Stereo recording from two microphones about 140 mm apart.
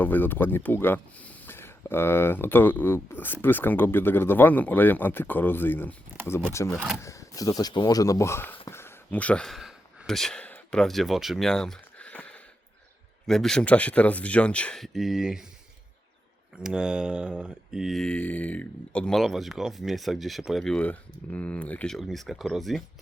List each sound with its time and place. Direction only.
0.0 s speech: 15° left (ahead or behind)
8.6 s a sound: 15° left (ahead or behind)
13.2 s speech: 5° left (ahead or behind)
16.6 s speech: 5° right (ahead or behind)